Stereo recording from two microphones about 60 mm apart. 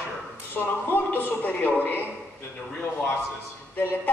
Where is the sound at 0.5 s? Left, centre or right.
Left.